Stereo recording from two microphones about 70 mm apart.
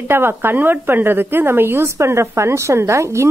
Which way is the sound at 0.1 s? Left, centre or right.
Right.